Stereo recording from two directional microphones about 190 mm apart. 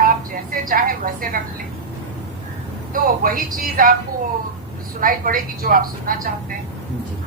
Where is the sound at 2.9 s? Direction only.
50° right (ahead or behind).